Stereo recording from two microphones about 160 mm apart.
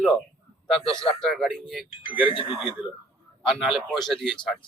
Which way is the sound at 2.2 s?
35° left (ahead or behind).